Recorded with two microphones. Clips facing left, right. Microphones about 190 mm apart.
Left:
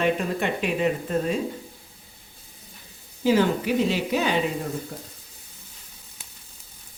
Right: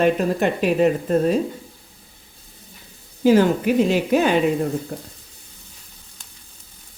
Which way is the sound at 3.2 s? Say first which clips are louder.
Right 5 dB; 50° right (ahead or behind).